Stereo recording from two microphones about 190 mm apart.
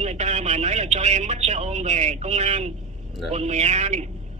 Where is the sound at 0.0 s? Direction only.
35° right (ahead or behind).